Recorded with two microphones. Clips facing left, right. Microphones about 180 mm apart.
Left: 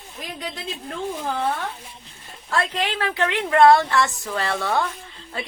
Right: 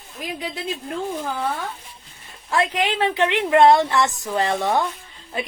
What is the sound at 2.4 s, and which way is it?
A woman's voice, 15° right (ahead or behind).